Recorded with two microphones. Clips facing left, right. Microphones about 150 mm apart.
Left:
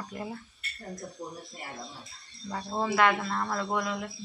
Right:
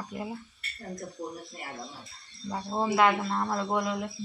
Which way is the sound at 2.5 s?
15° right (ahead or behind).